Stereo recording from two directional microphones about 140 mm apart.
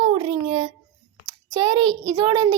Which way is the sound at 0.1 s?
40° right (ahead or behind).